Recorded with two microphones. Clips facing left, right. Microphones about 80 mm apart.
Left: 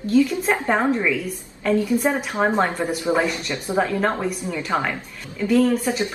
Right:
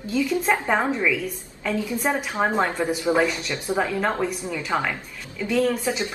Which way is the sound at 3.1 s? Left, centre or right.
Centre.